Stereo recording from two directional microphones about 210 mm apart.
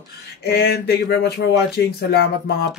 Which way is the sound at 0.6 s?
50° left (ahead or behind).